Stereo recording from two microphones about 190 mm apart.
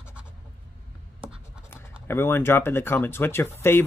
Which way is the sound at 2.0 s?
10° left (ahead or behind).